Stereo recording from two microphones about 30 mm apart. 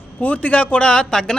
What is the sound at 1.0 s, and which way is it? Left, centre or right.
Speech, centre.